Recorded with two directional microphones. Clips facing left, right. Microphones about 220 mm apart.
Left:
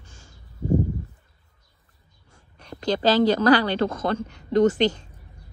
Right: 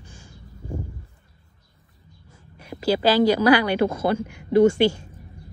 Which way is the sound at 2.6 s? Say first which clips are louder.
Right 1 dB; 10° right (ahead or behind).